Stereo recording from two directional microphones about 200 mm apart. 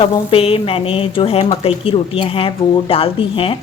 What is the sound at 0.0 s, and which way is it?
Speech, 30° left (ahead or behind).